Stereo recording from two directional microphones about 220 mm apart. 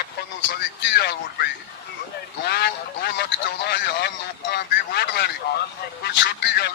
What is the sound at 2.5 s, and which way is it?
Speech, 50° left (ahead or behind).